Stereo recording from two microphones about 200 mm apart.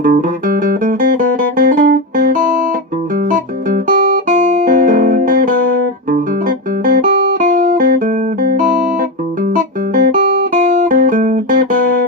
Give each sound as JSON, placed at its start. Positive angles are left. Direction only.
{"t": 0.0, "sound": "music", "side_deg": -45}
{"t": 3.2, "sound": "guitar", "side_deg": -45}
{"t": 6.8, "sound": "music", "side_deg": -45}
{"t": 9.6, "sound": "guitar", "side_deg": -45}